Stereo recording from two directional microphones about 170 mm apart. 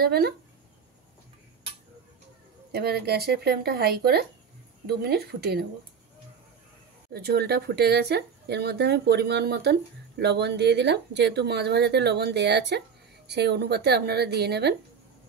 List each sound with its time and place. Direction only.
0.0 s speech: 65° right (ahead or behind)
2.7 s speech: 65° right (ahead or behind)
7.1 s speech: 70° right (ahead or behind)